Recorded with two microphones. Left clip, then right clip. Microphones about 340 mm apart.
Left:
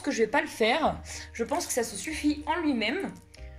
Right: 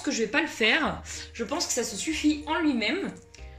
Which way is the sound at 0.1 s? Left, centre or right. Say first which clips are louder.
Left 1 dB; centre.